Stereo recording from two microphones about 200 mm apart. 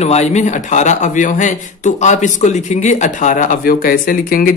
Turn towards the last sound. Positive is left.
turn(degrees=45)  # may be behind; listen again after turning